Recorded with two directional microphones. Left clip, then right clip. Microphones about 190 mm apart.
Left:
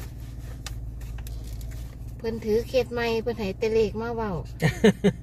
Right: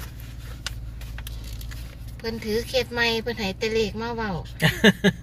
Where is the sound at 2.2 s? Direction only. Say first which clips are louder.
Left 2 dB; 30° left (ahead or behind).